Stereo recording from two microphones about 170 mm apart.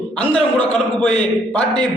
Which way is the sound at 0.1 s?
5° left (ahead or behind).